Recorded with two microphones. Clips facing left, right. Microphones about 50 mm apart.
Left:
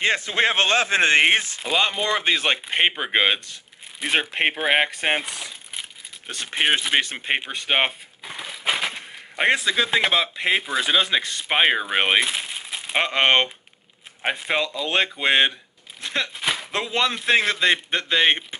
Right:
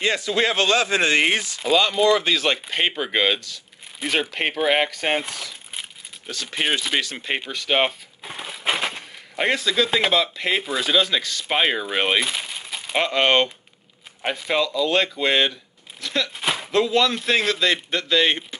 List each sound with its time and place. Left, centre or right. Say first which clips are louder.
0.0 s a man's voice: even; left
6.2 s a man's voice: left 2 dB; left
8.2 s a sound: right 1 dB; centre
9.4 s a man's voice: left 1 dB; left
12.3 s crumpling: even; centre
12.9 s a man's voice: even; left
16.0 s a sound: right 1 dB; left
16.3 s a sound: right 1 dB; centre
16.7 s a man's voice: right 7 dB; left